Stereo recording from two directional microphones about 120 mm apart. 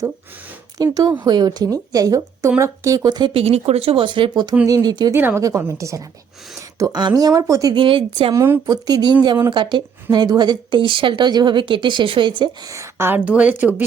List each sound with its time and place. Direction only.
0.8 s speech: 30° right (ahead or behind)
3.3 s speech: 60° right (ahead or behind); by 5.1 s 35° right (ahead or behind)
5.1 s a woman's voice: 20° right (ahead or behind)
7.7 s speech: 45° right (ahead or behind)
8.3 s a woman's voice: 20° right (ahead or behind)
8.6 s speech: 35° right (ahead or behind)
12.4 s a woman's voice: 30° right (ahead or behind); by 13.8 s 15° right (ahead or behind)